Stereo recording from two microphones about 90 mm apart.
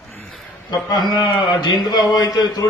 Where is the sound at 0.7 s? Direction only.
50° left (ahead or behind).